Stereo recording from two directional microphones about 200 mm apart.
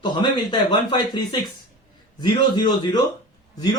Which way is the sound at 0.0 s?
20° left (ahead or behind).